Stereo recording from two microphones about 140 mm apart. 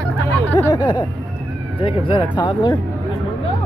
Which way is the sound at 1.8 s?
35° left (ahead or behind).